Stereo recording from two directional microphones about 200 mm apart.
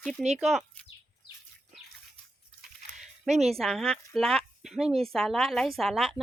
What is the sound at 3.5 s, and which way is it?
Speech, centre (ahead or behind).